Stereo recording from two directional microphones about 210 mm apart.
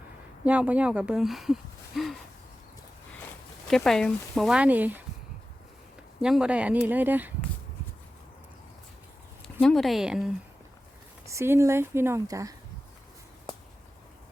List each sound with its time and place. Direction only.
0.4 s speech: 5° right (ahead or behind)
3.7 s speech: centre (ahead or behind)
6.2 s speech: 5° right (ahead or behind)
9.6 s speech: centre (ahead or behind); by 12.5 s 15° right (ahead or behind)